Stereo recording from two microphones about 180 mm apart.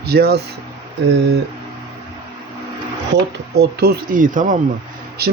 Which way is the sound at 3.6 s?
60° right (ahead or behind).